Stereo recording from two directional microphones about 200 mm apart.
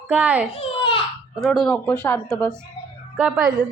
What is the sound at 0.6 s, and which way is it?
Baby cry, 25° left (ahead or behind).